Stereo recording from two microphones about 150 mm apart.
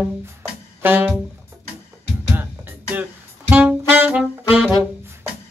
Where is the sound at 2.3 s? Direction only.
10° right (ahead or behind).